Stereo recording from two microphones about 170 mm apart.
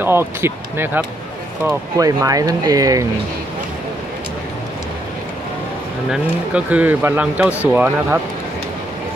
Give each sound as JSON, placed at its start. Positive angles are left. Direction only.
{"t": 0.0, "sound": "a man's voice", "side_deg": -15}
{"t": 6.5, "sound": "a man's voice", "side_deg": -10}